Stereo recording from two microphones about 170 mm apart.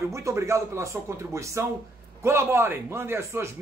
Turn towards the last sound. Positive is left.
turn(degrees=-15)  # may be behind; listen again after turning